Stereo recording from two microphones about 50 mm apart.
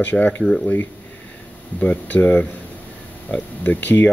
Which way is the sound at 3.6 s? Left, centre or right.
Left.